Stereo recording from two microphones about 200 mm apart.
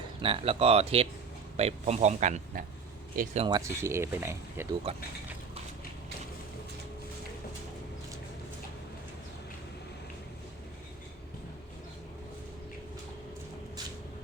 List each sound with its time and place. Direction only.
0.2 s speech: 30° right (ahead or behind)
3.4 s speech: 20° right (ahead or behind)